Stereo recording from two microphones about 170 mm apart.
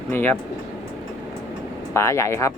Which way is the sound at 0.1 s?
10° left (ahead or behind).